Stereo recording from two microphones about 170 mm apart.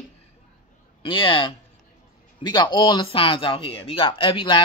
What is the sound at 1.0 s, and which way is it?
Speech, 30° left (ahead or behind).